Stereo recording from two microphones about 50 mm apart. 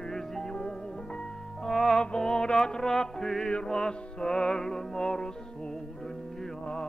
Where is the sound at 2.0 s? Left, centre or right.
Centre.